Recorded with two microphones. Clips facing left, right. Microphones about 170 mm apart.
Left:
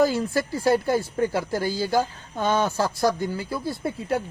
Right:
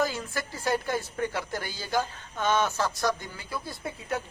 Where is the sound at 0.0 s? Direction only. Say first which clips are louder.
Left 8 dB; 35° left (ahead or behind).